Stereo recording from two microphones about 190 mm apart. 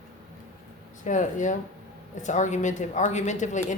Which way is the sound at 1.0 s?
40° left (ahead or behind).